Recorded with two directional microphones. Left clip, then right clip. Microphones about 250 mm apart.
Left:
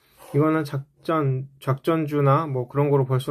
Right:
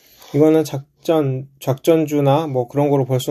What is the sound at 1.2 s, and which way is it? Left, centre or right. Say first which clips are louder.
Speech: right 6 dB; centre.